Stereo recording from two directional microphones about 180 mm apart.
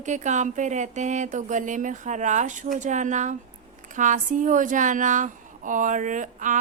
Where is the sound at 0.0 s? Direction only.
40° right (ahead or behind).